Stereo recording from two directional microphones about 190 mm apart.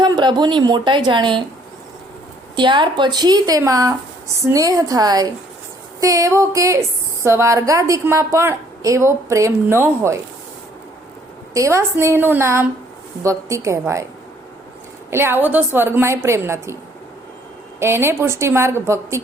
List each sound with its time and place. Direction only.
0.0 s speech: 20° right (ahead or behind)
2.6 s a woman's voice: 25° right (ahead or behind)
11.5 s a woman's voice: 15° right (ahead or behind)
15.1 s a woman's voice: 10° right (ahead or behind)
17.7 s a woman's voice: 10° right (ahead or behind)